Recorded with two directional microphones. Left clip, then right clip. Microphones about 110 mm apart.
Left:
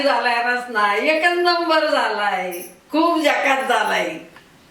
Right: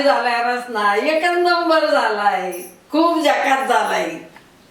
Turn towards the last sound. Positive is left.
turn(degrees=0)  # may be behind; listen again after turning